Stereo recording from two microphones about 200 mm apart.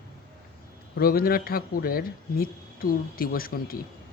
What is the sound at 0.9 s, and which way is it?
Speech, 50° left (ahead or behind).